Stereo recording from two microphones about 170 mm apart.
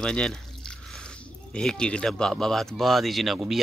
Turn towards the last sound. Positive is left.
turn(degrees=0)  # may be behind; listen again after turning